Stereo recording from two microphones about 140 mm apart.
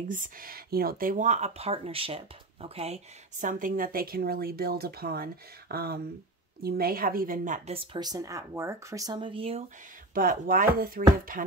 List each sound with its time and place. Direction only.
0.1 s speech: 80° right; by 7.7 s 65° right (ahead or behind)
7.7 s speech: 40° right (ahead or behind)
10.1 s speech: 85° right